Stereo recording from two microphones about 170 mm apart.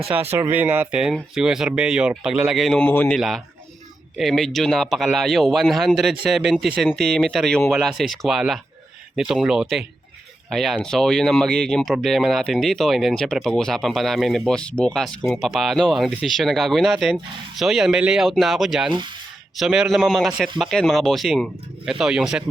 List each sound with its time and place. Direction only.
0.0 s speech: 5° right (ahead or behind)
18.9 s speech: 30° right (ahead or behind)
19.5 s speech: 5° right (ahead or behind)